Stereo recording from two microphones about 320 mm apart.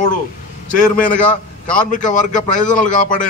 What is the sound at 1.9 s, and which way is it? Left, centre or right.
A man's voice, left.